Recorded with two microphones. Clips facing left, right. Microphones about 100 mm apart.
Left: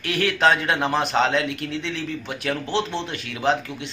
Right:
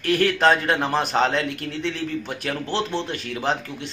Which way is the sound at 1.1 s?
40° right (ahead or behind).